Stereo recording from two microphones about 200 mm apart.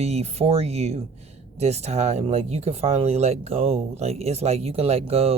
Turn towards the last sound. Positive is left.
turn(degrees=-30)  # may be behind; listen again after turning